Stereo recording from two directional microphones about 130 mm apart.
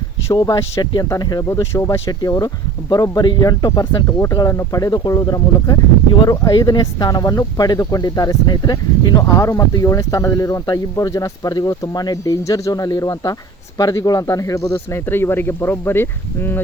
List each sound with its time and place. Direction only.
0.3 s speech: 30° left (ahead or behind)